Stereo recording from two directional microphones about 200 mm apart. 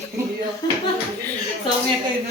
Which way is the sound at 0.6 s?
20° left (ahead or behind).